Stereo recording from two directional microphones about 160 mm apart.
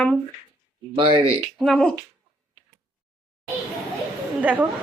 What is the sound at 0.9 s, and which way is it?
Speech, 30° right (ahead or behind).